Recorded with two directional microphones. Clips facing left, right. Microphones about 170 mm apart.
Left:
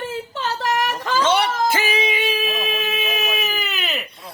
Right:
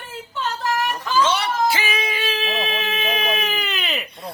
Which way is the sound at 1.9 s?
20° left (ahead or behind).